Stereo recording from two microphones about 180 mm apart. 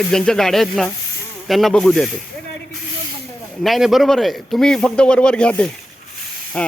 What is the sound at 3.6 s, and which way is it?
A man's voice, centre (ahead or behind).